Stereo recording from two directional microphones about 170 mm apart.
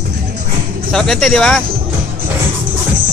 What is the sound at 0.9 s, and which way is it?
Speech, 5° left (ahead or behind).